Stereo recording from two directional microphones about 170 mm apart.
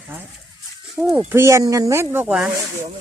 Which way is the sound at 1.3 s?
15° right (ahead or behind).